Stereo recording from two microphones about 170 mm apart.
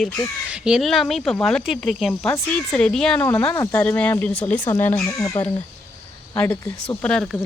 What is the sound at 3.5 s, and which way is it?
Speech, 20° left (ahead or behind).